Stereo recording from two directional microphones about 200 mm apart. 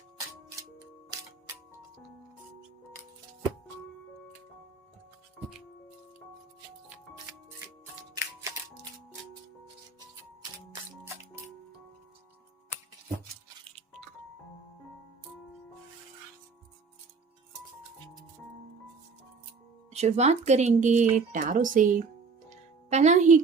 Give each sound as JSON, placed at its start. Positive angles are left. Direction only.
{"t": 8.1, "sound": "music", "side_deg": -15}
{"t": 19.9, "sound": "speech", "side_deg": -35}
{"t": 22.4, "sound": "music", "side_deg": -35}